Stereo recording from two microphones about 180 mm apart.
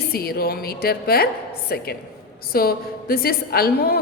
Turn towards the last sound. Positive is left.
turn(degrees=60)  # may be behind; listen again after turning